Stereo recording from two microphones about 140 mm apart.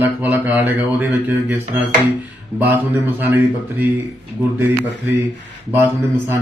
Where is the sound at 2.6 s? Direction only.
15° right (ahead or behind).